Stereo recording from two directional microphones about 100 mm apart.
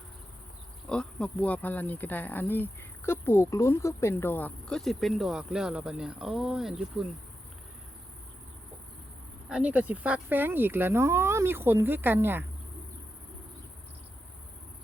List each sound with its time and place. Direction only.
0.9 s insect: 10° left (ahead or behind)
3.1 s speech: 25° left (ahead or behind); by 7.0 s 5° right (ahead or behind)
9.5 s speech: 10° right (ahead or behind)